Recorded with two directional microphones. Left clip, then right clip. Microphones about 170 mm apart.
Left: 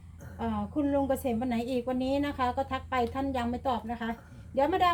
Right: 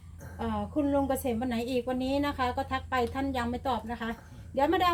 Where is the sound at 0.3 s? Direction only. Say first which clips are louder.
Right 1 dB; 10° left (ahead or behind).